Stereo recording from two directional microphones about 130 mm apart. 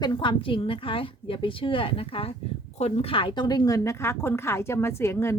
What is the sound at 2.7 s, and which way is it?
Speech, 55° left (ahead or behind).